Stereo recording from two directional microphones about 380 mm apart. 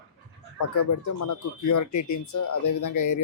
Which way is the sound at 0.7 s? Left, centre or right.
Left.